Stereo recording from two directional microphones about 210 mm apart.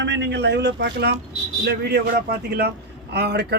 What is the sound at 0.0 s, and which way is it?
Speech, 55° right (ahead or behind).